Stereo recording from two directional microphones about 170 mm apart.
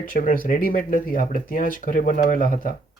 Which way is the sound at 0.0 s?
55° left (ahead or behind).